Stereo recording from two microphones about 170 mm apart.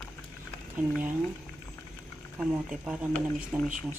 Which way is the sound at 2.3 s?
Centre (ahead or behind).